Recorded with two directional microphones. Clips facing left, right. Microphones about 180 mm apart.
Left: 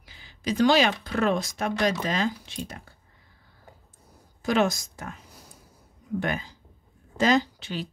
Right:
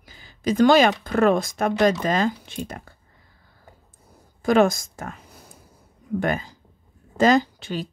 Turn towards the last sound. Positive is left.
turn(degrees=-50)  # may be behind; listen again after turning